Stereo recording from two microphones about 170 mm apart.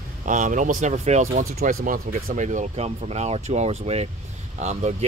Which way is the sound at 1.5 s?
55° right (ahead or behind).